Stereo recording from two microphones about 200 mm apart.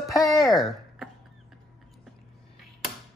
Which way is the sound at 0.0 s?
15° left (ahead or behind).